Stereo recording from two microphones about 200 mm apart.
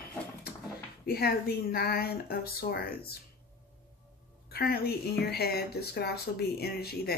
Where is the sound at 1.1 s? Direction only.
50° left (ahead or behind).